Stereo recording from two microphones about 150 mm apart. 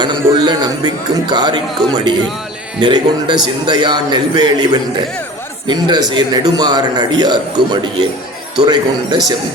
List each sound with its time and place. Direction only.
0.0 s a man's voice: 30° right (ahead or behind)